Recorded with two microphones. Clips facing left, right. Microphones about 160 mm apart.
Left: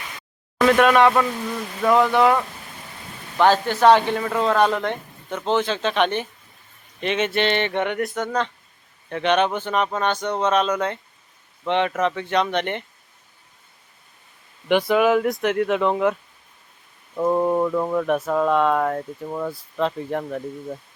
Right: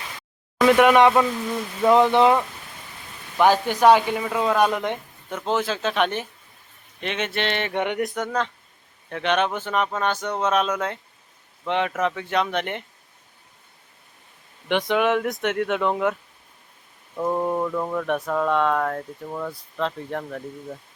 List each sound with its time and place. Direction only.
0.6 s a man's voice: 15° right (ahead or behind); by 7.7 s centre (ahead or behind)
7.7 s a man's voice: 15° right (ahead or behind)
14.7 s speech: 5° left (ahead or behind)
17.2 s speech: 5° left (ahead or behind)